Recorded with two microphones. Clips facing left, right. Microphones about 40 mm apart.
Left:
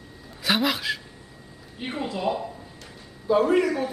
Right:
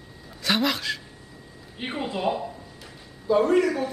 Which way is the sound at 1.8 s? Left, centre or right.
Centre.